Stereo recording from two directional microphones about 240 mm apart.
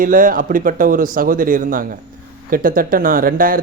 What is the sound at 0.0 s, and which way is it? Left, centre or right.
A man's voice, right.